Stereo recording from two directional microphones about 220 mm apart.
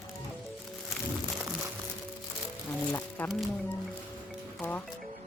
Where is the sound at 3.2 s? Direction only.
5° left (ahead or behind).